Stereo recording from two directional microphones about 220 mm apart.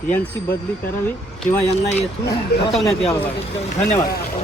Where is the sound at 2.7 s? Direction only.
Centre (ahead or behind).